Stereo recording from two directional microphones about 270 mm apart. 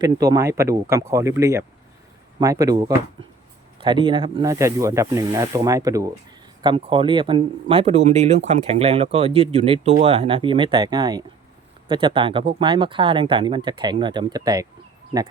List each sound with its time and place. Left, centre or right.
0.0 s speech: centre